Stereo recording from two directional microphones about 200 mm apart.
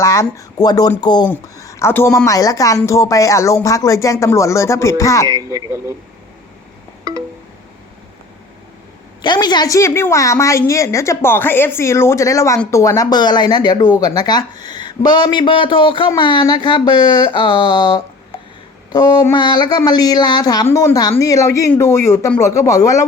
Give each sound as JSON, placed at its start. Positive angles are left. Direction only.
{"t": 0.0, "sound": "a woman's voice", "side_deg": 15}
{"t": 5.3, "sound": "speech", "side_deg": -20}
{"t": 9.2, "sound": "a woman's voice", "side_deg": 20}